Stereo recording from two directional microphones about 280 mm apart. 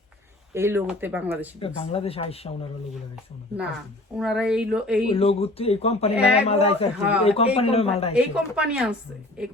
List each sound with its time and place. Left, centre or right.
0.5 s speech: centre
1.5 s speech: centre
4.2 s speech: centre
5.0 s speech: centre
8.1 s speech: centre